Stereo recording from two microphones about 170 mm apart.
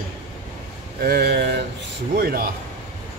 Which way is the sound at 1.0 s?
65° right (ahead or behind).